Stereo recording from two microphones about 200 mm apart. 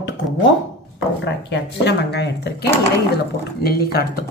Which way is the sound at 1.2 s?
60° left (ahead or behind).